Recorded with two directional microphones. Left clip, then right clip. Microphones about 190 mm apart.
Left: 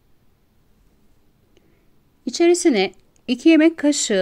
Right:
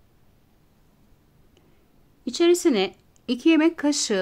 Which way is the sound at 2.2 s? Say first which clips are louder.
Left 3 dB; 25° left (ahead or behind).